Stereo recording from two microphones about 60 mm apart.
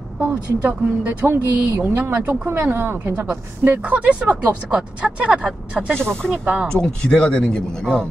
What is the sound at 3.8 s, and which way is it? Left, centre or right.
Speech, right.